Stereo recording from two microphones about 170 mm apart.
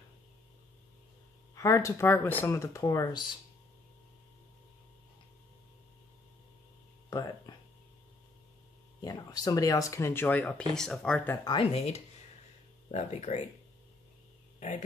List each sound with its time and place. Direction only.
1.5 s speech: 20° left (ahead or behind)
7.1 s a sound: 25° left (ahead or behind)
9.0 s speech: 20° left (ahead or behind)
11.4 s speech: 30° left (ahead or behind)